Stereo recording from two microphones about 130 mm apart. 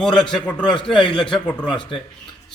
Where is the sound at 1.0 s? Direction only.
40° left (ahead or behind).